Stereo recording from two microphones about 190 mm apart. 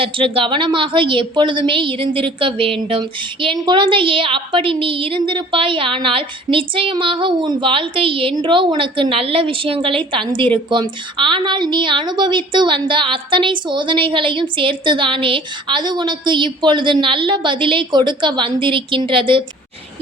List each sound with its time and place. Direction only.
0.0 s a woman's voice: 30° right (ahead or behind)